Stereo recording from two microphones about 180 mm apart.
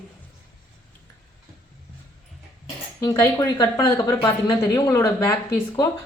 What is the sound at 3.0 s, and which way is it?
A woman's voice, 15° left (ahead or behind).